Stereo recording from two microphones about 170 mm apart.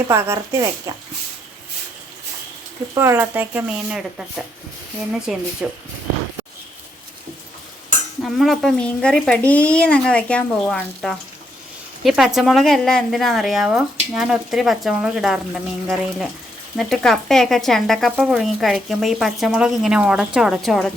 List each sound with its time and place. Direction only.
0.1 s speech: 15° right (ahead or behind)
2.9 s speech: 15° right (ahead or behind)
8.2 s speech: centre (ahead or behind)